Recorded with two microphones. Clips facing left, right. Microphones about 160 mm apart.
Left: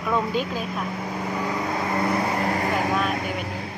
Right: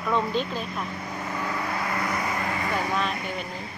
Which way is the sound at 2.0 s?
35° left (ahead or behind).